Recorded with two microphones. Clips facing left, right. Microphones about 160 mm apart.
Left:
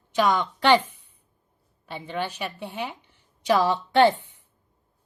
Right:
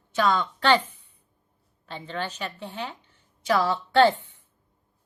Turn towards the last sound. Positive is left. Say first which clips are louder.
# left 1 dB
turn(degrees=15)  # may be behind; listen again after turning